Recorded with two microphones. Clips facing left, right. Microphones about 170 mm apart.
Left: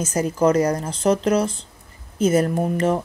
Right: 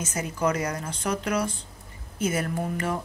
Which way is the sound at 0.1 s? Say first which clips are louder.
Left 9 dB; 40° left (ahead or behind).